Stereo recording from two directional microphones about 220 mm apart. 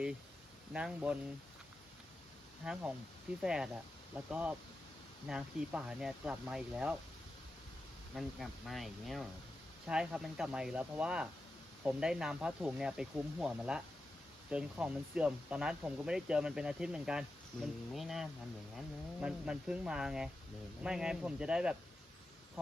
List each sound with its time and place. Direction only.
0.7 s speech: 5° right (ahead or behind)
2.6 s speech: 5° right (ahead or behind)
8.1 s speech: centre (ahead or behind)